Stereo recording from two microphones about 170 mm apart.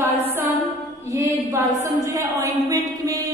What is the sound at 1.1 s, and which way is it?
A woman's voice, 15° right (ahead or behind).